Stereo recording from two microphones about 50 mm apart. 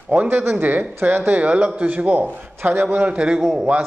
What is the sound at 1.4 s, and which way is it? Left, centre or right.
Speech, right.